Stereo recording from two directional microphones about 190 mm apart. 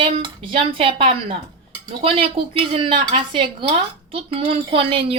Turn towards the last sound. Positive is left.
turn(degrees=-30)  # may be behind; listen again after turning